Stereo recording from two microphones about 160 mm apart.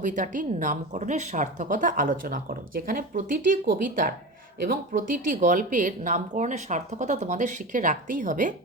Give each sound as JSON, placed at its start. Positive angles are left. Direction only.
{"t": 0.0, "sound": "a woman's voice", "side_deg": -55}